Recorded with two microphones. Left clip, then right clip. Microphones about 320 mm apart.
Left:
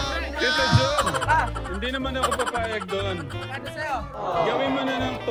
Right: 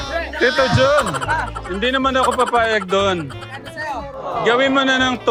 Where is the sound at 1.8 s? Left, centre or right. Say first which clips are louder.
Right 12 dB; right.